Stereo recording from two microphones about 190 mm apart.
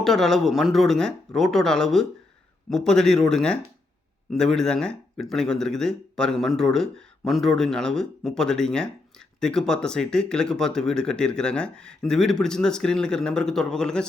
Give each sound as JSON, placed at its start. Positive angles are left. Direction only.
{"t": 0.0, "sound": "speech", "side_deg": 0}